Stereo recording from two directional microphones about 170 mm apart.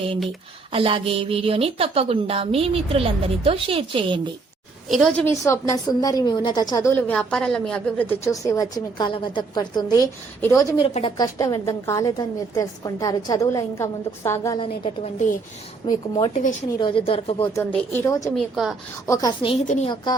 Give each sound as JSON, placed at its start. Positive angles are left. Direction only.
{"t": 0.7, "sound": "a woman's voice", "side_deg": -35}
{"t": 4.9, "sound": "a woman's voice", "side_deg": 0}
{"t": 5.2, "sound": "a woman's voice", "side_deg": 15}
{"t": 10.8, "sound": "speech", "side_deg": 35}
{"t": 11.2, "sound": "a woman's voice", "side_deg": 20}
{"t": 14.6, "sound": "speech", "side_deg": 35}
{"t": 15.8, "sound": "a woman's voice", "side_deg": 25}
{"t": 16.3, "sound": "speech", "side_deg": 50}
{"t": 16.7, "sound": "speech", "side_deg": 30}
{"t": 17.5, "sound": "speech", "side_deg": 15}
{"t": 18.3, "sound": "a woman's voice", "side_deg": 0}
{"t": 19.0, "sound": "speech", "side_deg": 20}
{"t": 19.6, "sound": "speech", "side_deg": 45}